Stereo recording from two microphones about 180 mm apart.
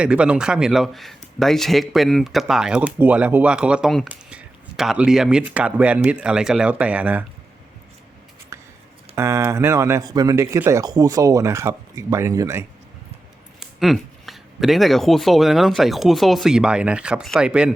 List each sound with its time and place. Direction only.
0.0 s speech: 5° right (ahead or behind)
8.5 s writing: 15° right (ahead or behind)
9.1 s speech: 15° right (ahead or behind)
13.6 s speech: centre (ahead or behind)